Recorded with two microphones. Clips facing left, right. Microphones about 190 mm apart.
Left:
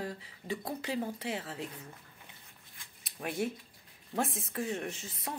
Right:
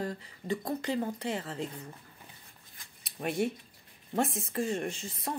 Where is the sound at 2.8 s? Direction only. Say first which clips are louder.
Even; 40° right (ahead or behind).